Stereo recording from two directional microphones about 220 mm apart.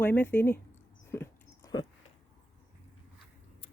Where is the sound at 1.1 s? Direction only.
10° left (ahead or behind).